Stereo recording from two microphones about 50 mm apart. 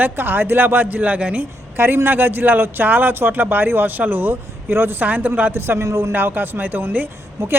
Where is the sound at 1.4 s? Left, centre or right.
Right.